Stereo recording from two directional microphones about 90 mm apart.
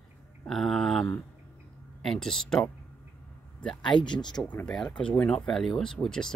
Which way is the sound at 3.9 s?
60° left (ahead or behind).